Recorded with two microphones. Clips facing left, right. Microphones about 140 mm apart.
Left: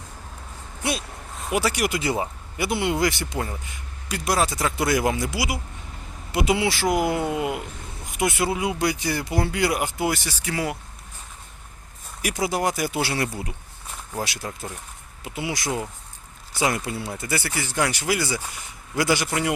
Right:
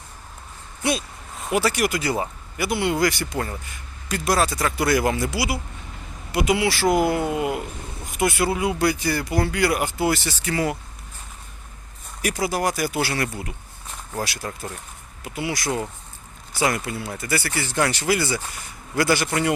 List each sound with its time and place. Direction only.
0.9 s a sound: centre (ahead or behind)
1.5 s speech: 15° left (ahead or behind)
3.3 s speech: 10° left (ahead or behind)
7.2 s speech: 20° right (ahead or behind)
8.1 s speech: 20° left (ahead or behind)
12.2 s speech: 20° left (ahead or behind)
15.6 s speech: centre (ahead or behind)
16.6 s speech: 15° left (ahead or behind)
16.8 s speech: 30° left (ahead or behind)
17.5 s speech: 10° left (ahead or behind)